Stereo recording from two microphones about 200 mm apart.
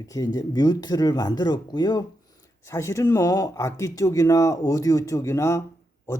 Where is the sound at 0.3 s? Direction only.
20° left (ahead or behind).